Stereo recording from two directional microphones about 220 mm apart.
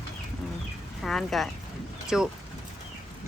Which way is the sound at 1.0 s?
Centre (ahead or behind).